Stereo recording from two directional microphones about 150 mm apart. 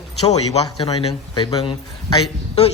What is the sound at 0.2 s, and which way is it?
A man's voice, 45° left (ahead or behind).